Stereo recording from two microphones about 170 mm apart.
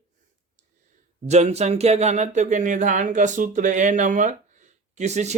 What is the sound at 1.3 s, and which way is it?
Speech, 40° right (ahead or behind).